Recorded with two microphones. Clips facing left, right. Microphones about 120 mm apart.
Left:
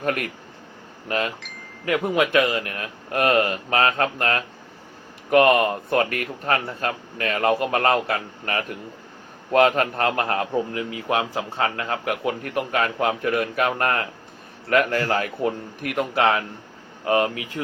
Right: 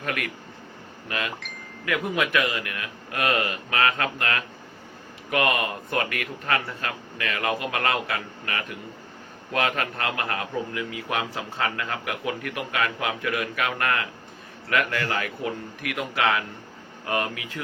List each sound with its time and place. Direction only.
0.0 s a man's voice: 40° left (ahead or behind)